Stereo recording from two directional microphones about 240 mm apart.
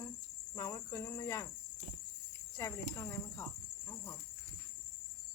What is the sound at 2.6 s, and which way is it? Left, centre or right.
Cricket, centre.